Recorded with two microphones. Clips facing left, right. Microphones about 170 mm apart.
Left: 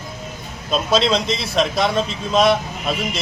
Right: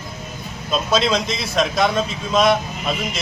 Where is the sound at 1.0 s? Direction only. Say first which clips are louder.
Left 1 dB; centre (ahead or behind).